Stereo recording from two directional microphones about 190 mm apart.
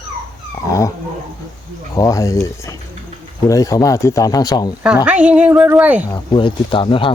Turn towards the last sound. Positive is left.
turn(degrees=25)  # may be behind; listen again after turning